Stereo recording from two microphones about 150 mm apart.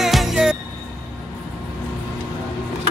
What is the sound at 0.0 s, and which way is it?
Music, centre (ahead or behind).